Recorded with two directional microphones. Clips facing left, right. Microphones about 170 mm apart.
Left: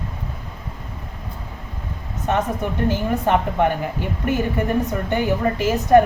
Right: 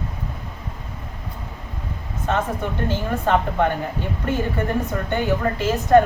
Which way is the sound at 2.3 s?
15° left (ahead or behind).